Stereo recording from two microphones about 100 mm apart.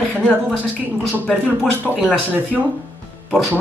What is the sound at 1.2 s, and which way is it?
Speech, 15° left (ahead or behind).